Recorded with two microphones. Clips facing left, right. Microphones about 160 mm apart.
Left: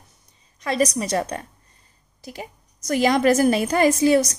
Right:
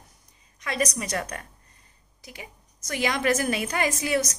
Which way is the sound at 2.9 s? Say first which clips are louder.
Left 7 dB; 40° left (ahead or behind).